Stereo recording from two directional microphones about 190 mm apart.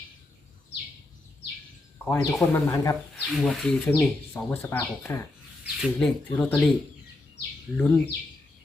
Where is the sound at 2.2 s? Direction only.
Centre (ahead or behind).